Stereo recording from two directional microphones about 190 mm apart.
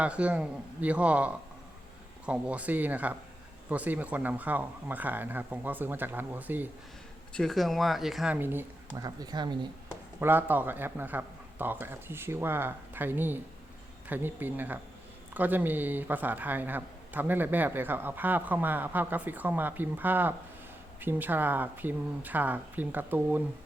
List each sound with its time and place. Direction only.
0.0 s speech: 5° right (ahead or behind)
7.3 s speech: centre (ahead or behind); by 9.6 s 25° right (ahead or behind)
10.2 s speech: 10° right (ahead or behind)